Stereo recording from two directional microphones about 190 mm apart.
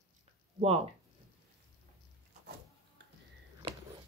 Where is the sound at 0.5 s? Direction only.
35° right (ahead or behind).